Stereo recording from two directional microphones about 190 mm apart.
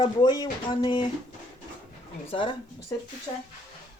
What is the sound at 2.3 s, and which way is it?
Speech, 25° left (ahead or behind).